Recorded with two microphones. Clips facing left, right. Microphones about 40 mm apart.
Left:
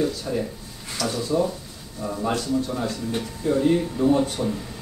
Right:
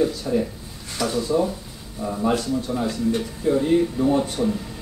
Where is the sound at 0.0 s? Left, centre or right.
Centre.